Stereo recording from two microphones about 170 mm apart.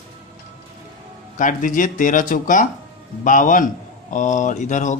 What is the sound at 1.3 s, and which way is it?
Speech, 50° left (ahead or behind).